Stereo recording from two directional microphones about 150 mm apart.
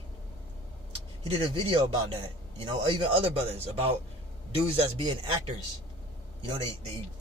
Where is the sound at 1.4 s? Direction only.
35° right (ahead or behind).